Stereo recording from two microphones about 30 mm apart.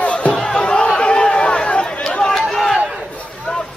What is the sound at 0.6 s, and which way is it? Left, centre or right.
Chatter, left.